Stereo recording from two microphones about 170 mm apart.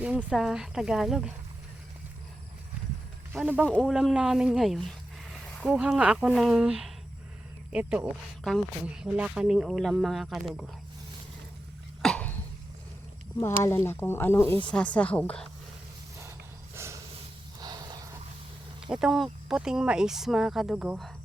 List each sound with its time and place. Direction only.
0.0 s speech: 5° right (ahead or behind)
3.3 s speech: 5° right (ahead or behind)
12.0 s cough: 10° left (ahead or behind)
13.6 s speech: 15° left (ahead or behind)
16.7 s snort: 15° right (ahead or behind)
17.6 s a sound: 25° right (ahead or behind)
18.8 s speech: centre (ahead or behind)